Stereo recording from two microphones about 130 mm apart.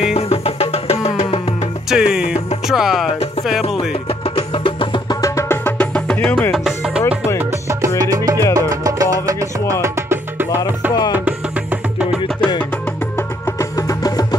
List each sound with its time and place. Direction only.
0.1 s music: 55° left (ahead or behind)
1.9 s music: 5° right (ahead or behind)
4.4 s music: 40° left (ahead or behind)
5.2 s music: 20° left (ahead or behind)
8.0 s music: 30° right (ahead or behind)
13.6 s music: 25° left (ahead or behind)